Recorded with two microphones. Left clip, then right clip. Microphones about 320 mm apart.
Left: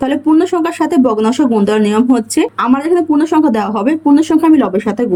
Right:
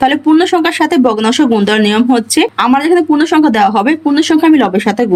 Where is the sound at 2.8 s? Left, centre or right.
Right.